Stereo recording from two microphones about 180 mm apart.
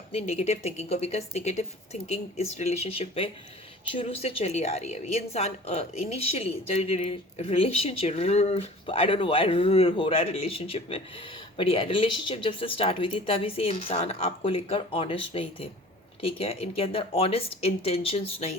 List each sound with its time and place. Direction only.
0.1 s a woman's voice: 35° left (ahead or behind)